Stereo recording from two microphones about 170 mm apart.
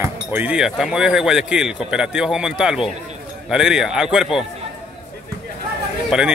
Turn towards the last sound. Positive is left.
turn(degrees=-5)  # may be behind; listen again after turning